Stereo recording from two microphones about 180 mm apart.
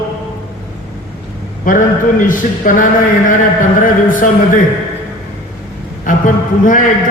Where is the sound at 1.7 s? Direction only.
50° left (ahead or behind).